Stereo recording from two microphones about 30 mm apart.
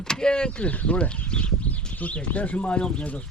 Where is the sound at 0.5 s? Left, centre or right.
Left.